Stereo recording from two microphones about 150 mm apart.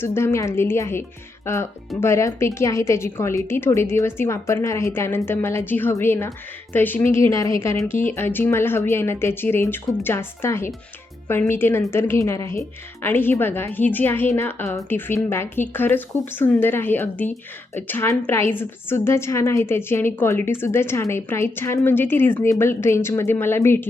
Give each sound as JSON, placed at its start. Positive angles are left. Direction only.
{"t": 0.0, "sound": "a woman's voice", "side_deg": 15}